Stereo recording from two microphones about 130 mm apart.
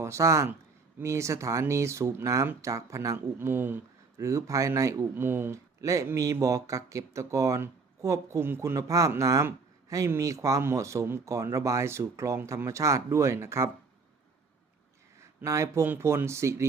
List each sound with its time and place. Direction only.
0.0 s speech: 20° right (ahead or behind)
15.2 s speech: 20° right (ahead or behind)